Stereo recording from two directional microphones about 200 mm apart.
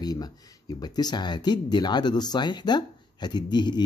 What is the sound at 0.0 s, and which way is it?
A man's voice, 20° left (ahead or behind).